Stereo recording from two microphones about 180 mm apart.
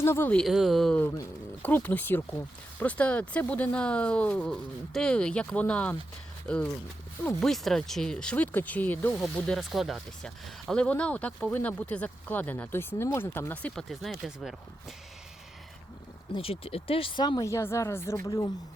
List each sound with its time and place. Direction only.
0.0 s speech: 15° left (ahead or behind)
7.3 s speech: centre (ahead or behind)
16.3 s speech: 30° left (ahead or behind)